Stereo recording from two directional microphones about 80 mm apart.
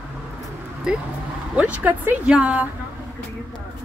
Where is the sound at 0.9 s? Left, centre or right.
Centre.